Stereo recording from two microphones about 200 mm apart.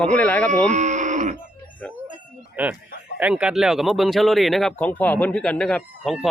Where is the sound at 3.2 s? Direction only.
5° right (ahead or behind).